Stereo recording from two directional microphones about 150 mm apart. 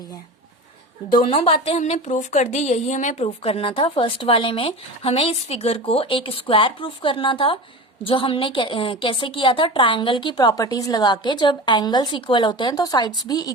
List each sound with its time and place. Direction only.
1.1 s a woman's voice: 35° left (ahead or behind)